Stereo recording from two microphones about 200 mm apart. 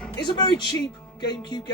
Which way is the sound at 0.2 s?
20° left (ahead or behind).